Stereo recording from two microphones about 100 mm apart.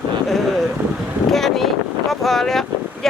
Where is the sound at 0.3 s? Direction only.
Centre (ahead or behind).